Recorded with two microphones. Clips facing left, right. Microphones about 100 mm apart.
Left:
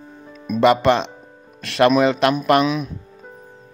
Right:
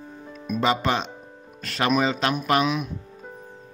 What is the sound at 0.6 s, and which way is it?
Speech, 70° left (ahead or behind).